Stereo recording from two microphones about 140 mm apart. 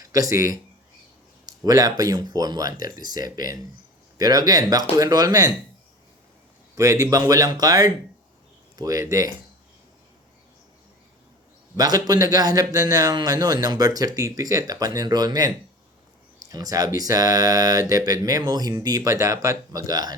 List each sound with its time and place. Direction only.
0.0 s a man's voice: 25° right (ahead or behind)
6.7 s a man's voice: 20° right (ahead or behind)
11.8 s a man's voice: 25° right (ahead or behind)